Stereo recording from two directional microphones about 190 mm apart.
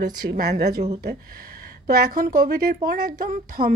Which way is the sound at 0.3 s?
60° right (ahead or behind).